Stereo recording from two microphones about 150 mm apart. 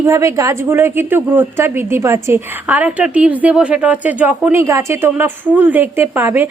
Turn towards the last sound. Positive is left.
turn(degrees=-15)  # may be behind; listen again after turning